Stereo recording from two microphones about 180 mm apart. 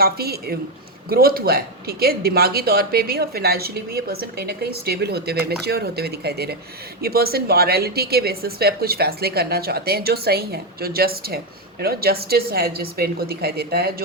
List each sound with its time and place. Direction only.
0.0 s speech: 60° right (ahead or behind)